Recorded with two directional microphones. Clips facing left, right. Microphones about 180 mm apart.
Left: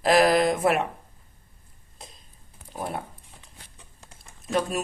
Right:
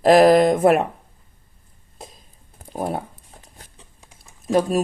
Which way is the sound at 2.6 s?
45° right (ahead or behind).